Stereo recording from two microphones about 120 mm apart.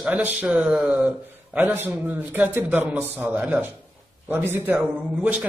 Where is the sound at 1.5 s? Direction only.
15° right (ahead or behind).